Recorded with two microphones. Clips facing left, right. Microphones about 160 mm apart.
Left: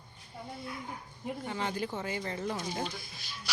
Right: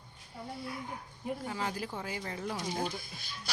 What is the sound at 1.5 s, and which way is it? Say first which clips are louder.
Speech: left 6 dB; 5° right (ahead or behind).